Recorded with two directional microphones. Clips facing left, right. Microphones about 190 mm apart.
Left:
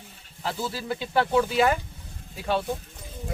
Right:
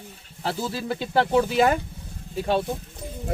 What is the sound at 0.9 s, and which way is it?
Speech, 30° right (ahead or behind).